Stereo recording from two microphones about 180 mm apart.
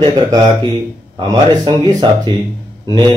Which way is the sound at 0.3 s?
20° right (ahead or behind).